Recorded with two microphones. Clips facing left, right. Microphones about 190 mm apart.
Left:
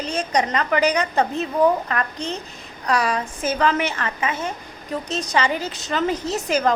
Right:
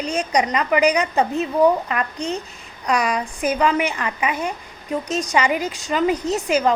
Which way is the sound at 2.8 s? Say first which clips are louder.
Right 1 dB; 15° right (ahead or behind).